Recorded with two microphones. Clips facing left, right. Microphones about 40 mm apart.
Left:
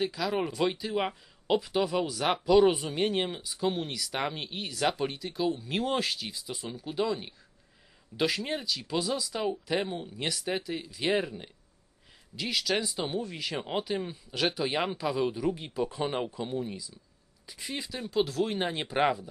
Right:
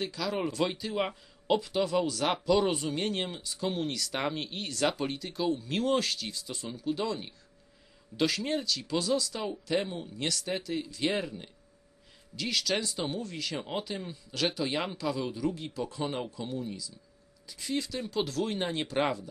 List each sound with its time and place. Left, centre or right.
0.0 s speech: centre